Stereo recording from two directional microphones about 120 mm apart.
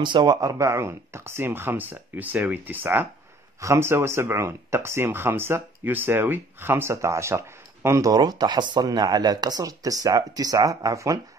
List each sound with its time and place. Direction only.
0.0 s speech: 40° right (ahead or behind)